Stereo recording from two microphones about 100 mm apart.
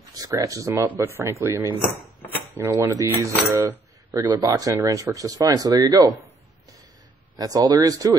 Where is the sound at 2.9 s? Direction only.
35° right (ahead or behind).